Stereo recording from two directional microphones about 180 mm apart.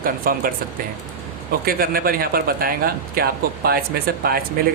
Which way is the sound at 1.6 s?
55° right (ahead or behind).